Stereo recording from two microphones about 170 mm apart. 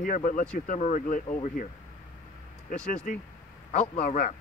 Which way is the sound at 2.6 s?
50° left (ahead or behind).